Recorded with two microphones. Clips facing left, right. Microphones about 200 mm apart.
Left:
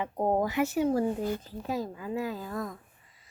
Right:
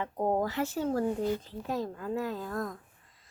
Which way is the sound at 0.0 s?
15° left (ahead or behind).